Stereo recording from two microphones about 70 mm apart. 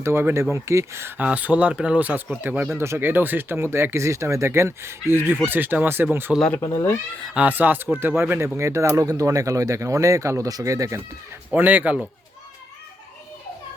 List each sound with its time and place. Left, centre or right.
0.0 s speech: right
1.1 s speech: right
7.3 s speech: right
8.5 s speech: right
11.5 s speech: right